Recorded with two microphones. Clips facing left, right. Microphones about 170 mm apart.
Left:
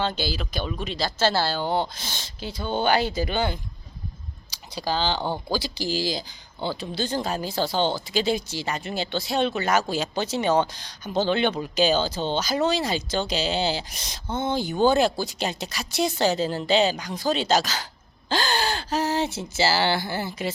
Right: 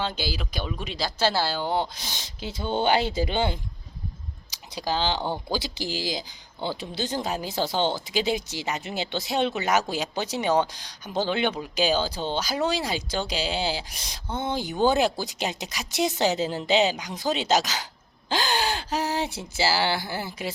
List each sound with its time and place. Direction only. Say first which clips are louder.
0.0 s speech: left 3 dB; 10° right (ahead or behind)
5.5 s speech: left 2 dB; 20° right (ahead or behind)